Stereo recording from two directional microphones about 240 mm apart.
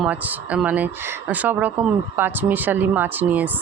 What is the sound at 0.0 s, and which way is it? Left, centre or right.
Speech, centre.